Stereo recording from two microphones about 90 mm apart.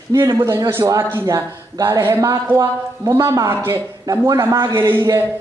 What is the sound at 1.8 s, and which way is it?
A man's voice, 25° right (ahead or behind).